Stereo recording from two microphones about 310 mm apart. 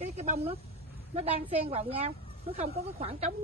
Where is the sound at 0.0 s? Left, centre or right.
Right.